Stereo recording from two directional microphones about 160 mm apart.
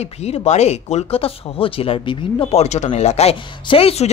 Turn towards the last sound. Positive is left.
turn(degrees=40)  # may be behind; listen again after turning